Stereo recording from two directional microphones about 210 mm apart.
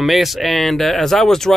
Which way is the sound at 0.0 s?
Centre (ahead or behind).